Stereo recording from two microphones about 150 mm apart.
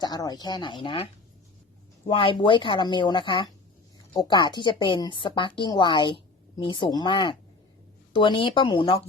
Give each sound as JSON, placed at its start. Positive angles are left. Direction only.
{"t": 0.0, "sound": "speech", "side_deg": 25}
{"t": 2.0, "sound": "a woman's voice", "side_deg": 35}